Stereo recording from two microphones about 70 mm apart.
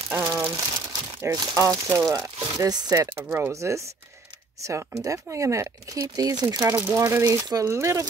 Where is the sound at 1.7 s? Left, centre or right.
Right.